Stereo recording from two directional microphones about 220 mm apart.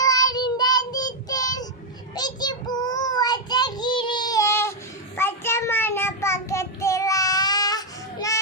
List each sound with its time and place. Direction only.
0.0 s child singing: 15° left (ahead or behind)